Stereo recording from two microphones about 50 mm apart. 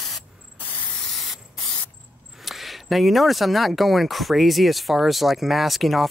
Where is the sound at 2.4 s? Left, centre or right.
Centre.